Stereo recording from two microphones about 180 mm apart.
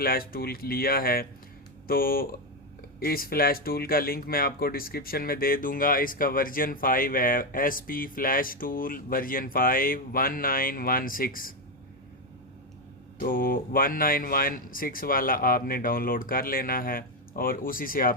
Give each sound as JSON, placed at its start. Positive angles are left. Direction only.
{"t": 0.0, "sound": "speech", "side_deg": 55}
{"t": 13.1, "sound": "speech", "side_deg": 50}